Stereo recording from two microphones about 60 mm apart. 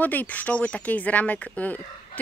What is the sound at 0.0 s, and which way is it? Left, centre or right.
Speech, left.